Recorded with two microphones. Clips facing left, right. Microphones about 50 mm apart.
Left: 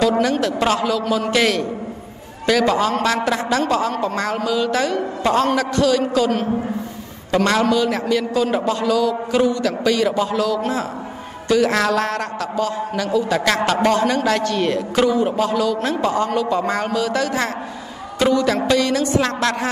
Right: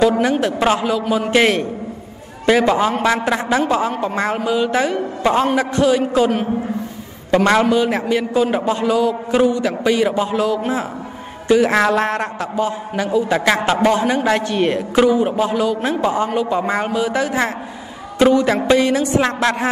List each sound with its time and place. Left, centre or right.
0.2 s a man's voice: right